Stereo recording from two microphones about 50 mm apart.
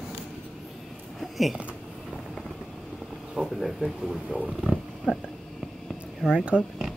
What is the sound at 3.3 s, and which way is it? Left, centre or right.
Speech, centre.